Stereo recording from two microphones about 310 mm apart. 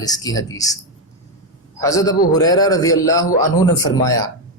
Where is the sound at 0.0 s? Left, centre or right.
Centre.